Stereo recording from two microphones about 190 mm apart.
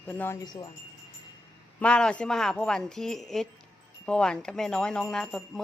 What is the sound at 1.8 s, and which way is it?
Speech, 5° left (ahead or behind).